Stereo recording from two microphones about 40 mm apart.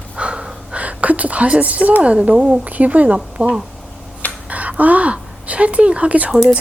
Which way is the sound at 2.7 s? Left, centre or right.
Right.